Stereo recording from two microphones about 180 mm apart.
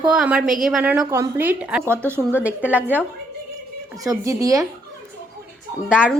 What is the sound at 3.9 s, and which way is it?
Speech, 20° right (ahead or behind).